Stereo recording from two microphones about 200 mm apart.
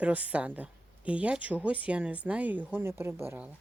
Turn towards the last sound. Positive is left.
turn(degrees=-10)  # may be behind; listen again after turning